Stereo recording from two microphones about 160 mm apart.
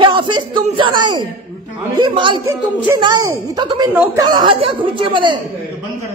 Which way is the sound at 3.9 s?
10° right (ahead or behind).